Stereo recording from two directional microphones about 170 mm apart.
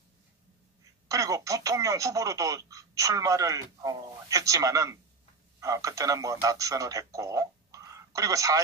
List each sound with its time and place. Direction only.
1.0 s speech: 20° right (ahead or behind)